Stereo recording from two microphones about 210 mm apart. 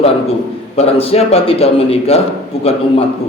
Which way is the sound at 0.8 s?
30° left (ahead or behind).